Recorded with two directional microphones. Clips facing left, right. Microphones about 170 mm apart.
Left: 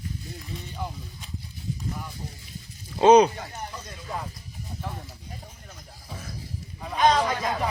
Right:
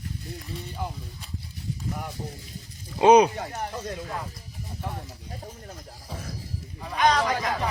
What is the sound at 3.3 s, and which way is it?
Speech, 55° right (ahead or behind).